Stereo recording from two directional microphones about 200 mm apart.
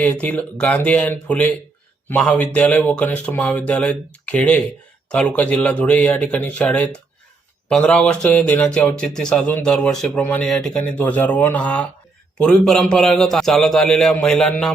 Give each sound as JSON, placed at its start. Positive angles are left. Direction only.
{"t": 0.0, "sound": "a man's voice", "side_deg": 5}